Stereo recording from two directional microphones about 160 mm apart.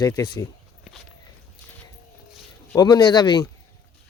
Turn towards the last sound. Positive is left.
turn(degrees=25)  # may be behind; listen again after turning